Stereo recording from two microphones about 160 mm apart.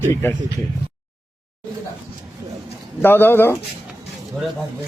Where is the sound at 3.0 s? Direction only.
15° left (ahead or behind).